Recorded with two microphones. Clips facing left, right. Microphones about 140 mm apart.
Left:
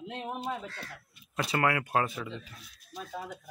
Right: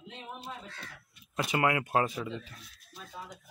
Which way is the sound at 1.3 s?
20° right (ahead or behind).